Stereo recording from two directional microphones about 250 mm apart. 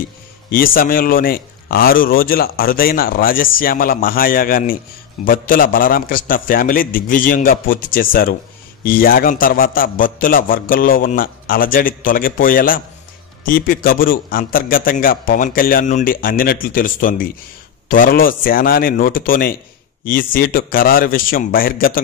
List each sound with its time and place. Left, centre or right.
0.5 s a man's voice: left